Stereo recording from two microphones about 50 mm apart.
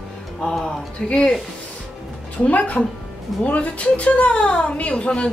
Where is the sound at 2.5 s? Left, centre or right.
Left.